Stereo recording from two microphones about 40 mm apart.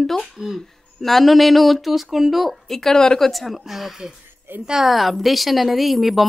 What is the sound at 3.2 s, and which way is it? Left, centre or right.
A woman's voice, centre.